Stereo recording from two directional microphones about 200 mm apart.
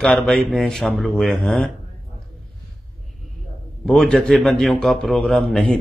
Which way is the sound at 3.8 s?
5° left (ahead or behind).